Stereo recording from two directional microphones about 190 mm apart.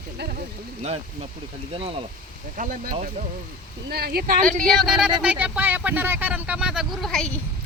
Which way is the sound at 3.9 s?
55° right (ahead or behind).